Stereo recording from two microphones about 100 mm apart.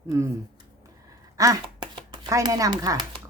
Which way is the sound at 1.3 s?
35° right (ahead or behind).